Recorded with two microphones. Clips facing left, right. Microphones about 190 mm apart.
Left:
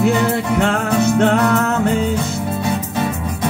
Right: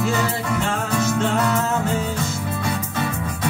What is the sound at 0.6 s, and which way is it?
Music, 65° left (ahead or behind).